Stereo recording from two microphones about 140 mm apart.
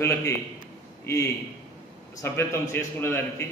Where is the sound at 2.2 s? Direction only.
20° left (ahead or behind).